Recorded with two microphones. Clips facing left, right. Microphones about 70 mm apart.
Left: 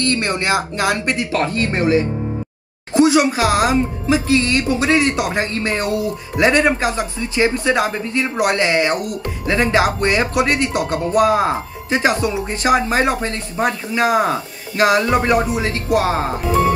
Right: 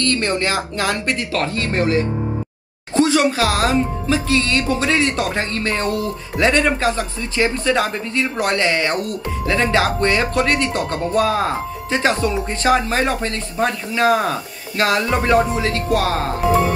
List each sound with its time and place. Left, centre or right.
0.0 s speech: left